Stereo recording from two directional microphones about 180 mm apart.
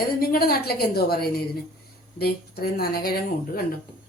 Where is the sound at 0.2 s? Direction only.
55° left (ahead or behind).